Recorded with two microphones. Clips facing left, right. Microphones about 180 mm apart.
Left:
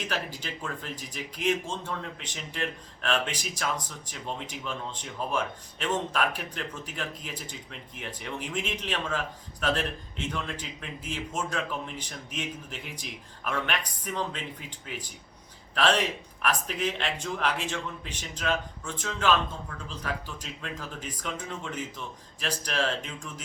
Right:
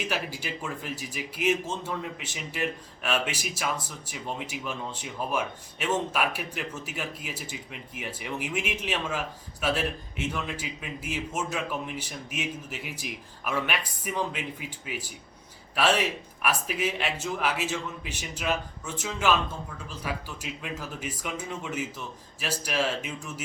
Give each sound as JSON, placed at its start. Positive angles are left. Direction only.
{"t": 0.0, "sound": "speech", "side_deg": -10}